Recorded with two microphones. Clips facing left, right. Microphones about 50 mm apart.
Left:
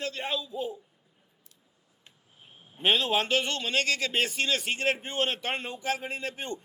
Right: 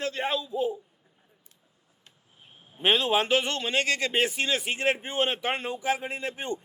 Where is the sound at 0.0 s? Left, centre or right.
Right.